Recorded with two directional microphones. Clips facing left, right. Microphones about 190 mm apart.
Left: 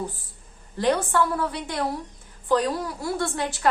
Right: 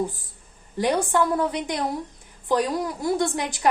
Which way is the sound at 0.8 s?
15° right (ahead or behind).